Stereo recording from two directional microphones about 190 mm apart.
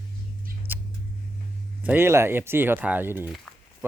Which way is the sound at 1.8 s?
10° right (ahead or behind).